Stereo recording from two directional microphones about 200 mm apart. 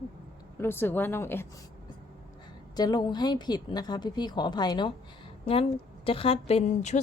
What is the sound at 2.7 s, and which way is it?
A woman's voice, 20° left (ahead or behind).